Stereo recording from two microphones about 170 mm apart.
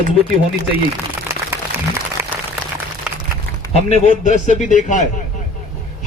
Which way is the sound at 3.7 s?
40° left (ahead or behind).